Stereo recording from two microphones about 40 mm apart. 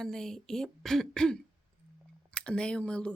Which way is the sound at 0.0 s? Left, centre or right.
Centre.